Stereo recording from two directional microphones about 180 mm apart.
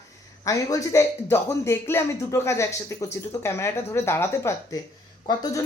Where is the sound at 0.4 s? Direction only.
20° left (ahead or behind).